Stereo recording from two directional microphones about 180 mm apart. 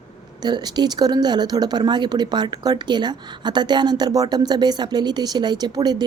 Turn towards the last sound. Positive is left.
turn(degrees=-20)  # may be behind; listen again after turning